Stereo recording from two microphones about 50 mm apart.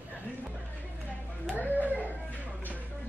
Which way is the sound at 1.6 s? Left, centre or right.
Left.